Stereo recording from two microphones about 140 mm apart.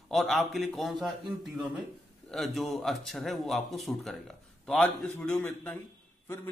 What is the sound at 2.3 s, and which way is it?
A man's voice, centre (ahead or behind).